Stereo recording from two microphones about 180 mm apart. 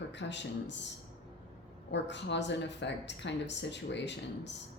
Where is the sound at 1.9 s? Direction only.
75° left (ahead or behind).